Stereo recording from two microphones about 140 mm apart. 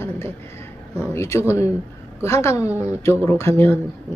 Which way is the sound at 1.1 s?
20° left (ahead or behind).